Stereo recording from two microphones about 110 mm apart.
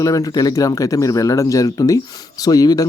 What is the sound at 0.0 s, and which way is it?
Speech, 30° left (ahead or behind).